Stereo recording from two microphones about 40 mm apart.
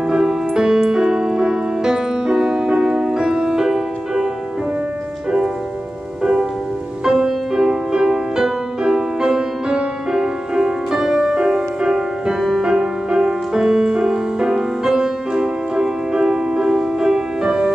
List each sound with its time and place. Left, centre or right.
0.1 s music: centre
7.1 s music: centre
12.6 s music: centre